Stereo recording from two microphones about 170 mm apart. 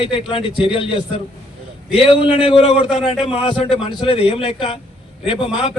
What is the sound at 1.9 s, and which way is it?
A man's voice, 30° left (ahead or behind).